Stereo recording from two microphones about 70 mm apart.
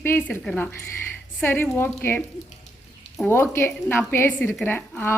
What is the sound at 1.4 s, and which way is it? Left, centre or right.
Speech, left.